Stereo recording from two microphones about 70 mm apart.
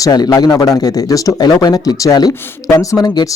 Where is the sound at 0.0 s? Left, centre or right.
Left.